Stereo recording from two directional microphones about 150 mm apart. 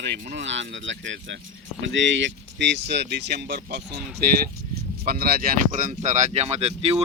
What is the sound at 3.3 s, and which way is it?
Speech, 90° right.